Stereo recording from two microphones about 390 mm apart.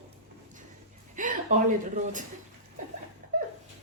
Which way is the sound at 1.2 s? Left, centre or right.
Centre.